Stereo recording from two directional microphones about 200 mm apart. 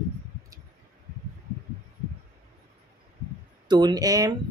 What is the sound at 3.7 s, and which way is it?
Speech, 20° right (ahead or behind).